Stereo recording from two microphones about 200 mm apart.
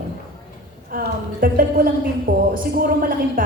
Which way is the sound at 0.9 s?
45° right (ahead or behind).